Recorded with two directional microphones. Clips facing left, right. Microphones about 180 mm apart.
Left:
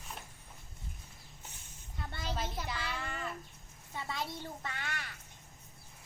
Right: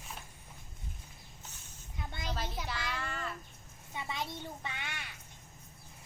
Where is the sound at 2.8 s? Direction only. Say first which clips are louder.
Right 1 dB; centre (ahead or behind).